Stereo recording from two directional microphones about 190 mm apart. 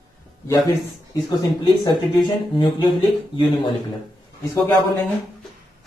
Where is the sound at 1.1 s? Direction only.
20° left (ahead or behind).